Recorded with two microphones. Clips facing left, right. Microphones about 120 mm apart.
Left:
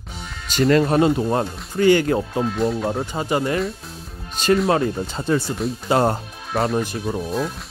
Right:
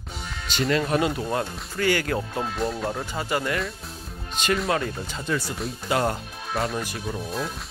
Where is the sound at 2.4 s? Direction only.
Centre (ahead or behind).